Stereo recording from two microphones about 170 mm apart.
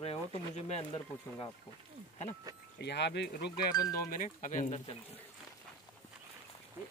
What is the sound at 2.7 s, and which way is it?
Speech, 85° left.